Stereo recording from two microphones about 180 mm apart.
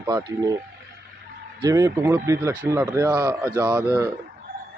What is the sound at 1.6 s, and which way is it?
Speech, 20° right (ahead or behind).